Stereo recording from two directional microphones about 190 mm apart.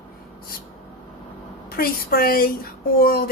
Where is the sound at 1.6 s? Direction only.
50° left (ahead or behind).